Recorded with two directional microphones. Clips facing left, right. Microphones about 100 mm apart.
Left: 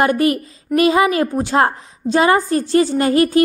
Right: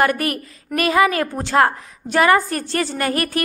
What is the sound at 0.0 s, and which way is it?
A woman's voice, 20° left (ahead or behind).